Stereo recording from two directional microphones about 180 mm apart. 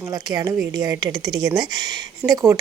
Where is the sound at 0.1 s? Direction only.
20° right (ahead or behind).